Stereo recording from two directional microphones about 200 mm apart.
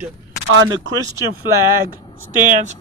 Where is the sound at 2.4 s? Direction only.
40° right (ahead or behind).